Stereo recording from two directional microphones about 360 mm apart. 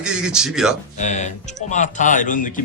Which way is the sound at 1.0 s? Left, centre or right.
Centre.